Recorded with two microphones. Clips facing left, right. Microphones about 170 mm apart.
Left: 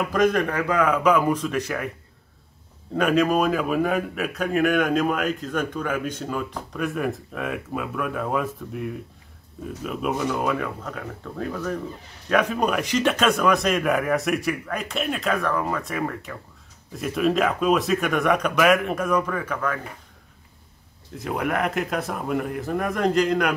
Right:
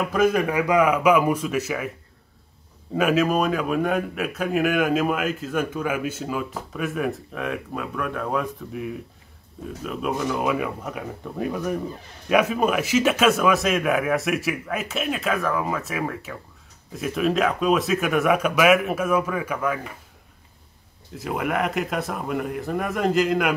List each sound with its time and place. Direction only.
0.0 s speech: 5° right (ahead or behind)
2.9 s a man's voice: 5° right (ahead or behind)
21.1 s a man's voice: centre (ahead or behind)